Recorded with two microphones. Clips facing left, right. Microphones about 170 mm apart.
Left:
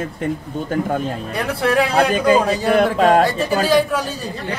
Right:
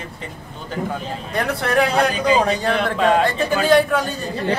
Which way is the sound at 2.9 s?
40° left (ahead or behind).